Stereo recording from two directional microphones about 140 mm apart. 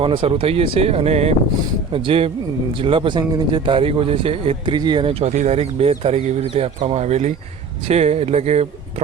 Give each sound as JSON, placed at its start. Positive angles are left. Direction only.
{"t": 0.0, "sound": "speech", "side_deg": -40}
{"t": 5.2, "sound": "speech", "side_deg": -55}